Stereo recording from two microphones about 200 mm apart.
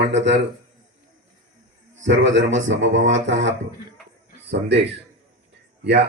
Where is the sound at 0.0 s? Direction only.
65° right (ahead or behind).